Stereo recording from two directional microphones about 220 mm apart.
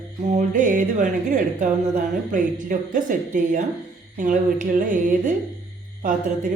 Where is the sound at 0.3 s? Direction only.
35° right (ahead or behind).